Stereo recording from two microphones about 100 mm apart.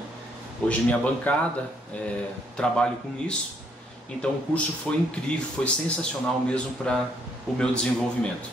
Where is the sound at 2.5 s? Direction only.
10° left (ahead or behind).